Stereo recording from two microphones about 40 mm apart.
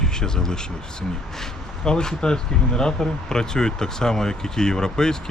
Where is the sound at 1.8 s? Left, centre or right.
Centre.